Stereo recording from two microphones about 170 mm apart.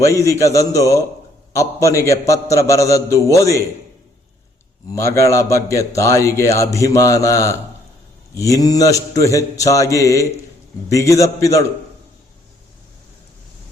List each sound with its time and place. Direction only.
0.0 s mantra: 20° left (ahead or behind)
1.5 s a man's voice: 15° left (ahead or behind)
4.9 s a man's voice: 15° left (ahead or behind)
8.4 s mantra: 20° left (ahead or behind)